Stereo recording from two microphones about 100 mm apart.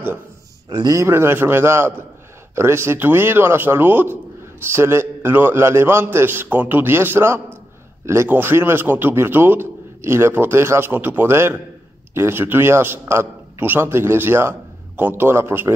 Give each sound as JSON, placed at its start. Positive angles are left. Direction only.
{"t": 0.7, "sound": "speech", "side_deg": -45}
{"t": 0.9, "sound": "a man's voice", "side_deg": -25}